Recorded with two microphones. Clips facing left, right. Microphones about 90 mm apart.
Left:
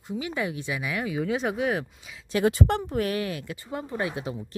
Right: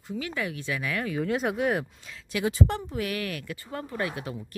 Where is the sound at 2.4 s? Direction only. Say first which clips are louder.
Left 3 dB; 65° left (ahead or behind).